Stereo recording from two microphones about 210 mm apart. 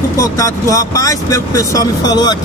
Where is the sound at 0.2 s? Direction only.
15° left (ahead or behind).